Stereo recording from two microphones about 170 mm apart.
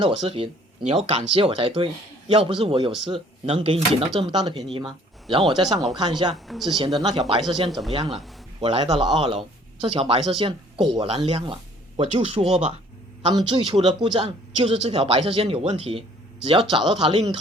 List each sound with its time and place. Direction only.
0.0 s speech: 30° right (ahead or behind)
6.3 s speech: centre (ahead or behind)
6.7 s speech: 25° right (ahead or behind)
7.7 s speech: centre (ahead or behind)
7.9 s speech: 35° right (ahead or behind)